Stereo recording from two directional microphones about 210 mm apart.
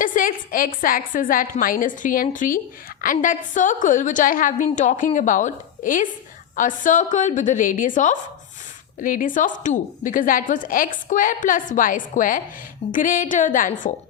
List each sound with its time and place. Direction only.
0.0 s a woman's voice: 40° left (ahead or behind)